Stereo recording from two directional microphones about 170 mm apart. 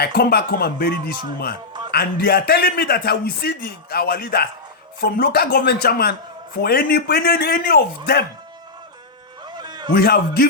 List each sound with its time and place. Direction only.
0.0 s a man's voice: 65° left (ahead or behind)
9.6 s a sound: 25° right (ahead or behind)
9.9 s a man's voice: 65° left (ahead or behind)